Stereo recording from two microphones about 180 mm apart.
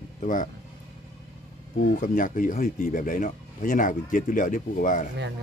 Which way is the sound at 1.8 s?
45° left (ahead or behind).